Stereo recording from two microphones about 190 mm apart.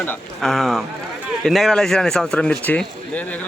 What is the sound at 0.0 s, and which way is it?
A man's voice, 5° left (ahead or behind).